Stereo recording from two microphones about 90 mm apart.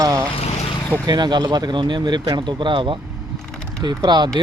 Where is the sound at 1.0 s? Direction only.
50° right (ahead or behind).